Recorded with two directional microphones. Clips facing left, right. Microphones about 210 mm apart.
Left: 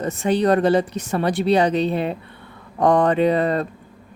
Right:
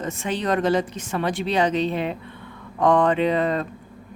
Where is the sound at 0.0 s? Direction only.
35° left (ahead or behind).